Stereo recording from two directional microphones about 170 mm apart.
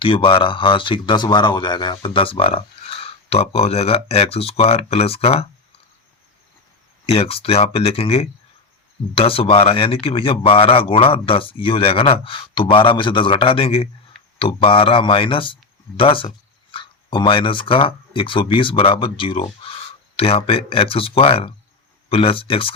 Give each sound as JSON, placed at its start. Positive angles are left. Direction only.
{"t": 0.0, "sound": "speech", "side_deg": 30}
{"t": 7.0, "sound": "speech", "side_deg": 35}